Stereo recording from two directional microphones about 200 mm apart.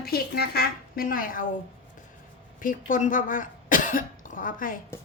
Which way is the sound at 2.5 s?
40° left (ahead or behind).